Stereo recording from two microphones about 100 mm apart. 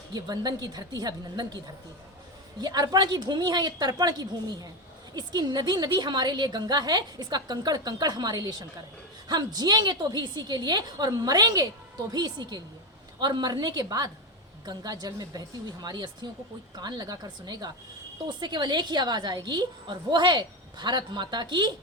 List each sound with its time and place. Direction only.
0.1 s a woman's voice: 40° right (ahead or behind)